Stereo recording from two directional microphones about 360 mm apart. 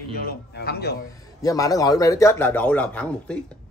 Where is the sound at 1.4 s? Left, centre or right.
Centre.